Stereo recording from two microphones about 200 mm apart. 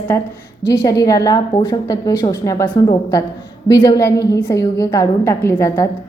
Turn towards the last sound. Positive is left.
turn(degrees=15)  # may be behind; listen again after turning